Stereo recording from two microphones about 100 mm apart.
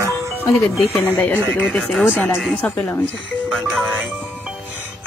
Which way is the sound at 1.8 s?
5° left (ahead or behind).